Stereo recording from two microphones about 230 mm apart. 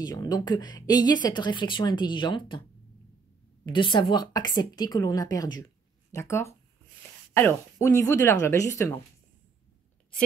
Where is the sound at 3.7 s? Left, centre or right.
Left.